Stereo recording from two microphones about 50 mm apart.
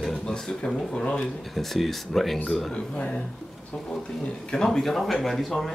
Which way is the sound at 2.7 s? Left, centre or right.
Centre.